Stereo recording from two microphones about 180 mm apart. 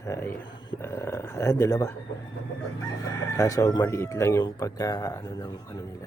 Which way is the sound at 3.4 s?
20° left (ahead or behind).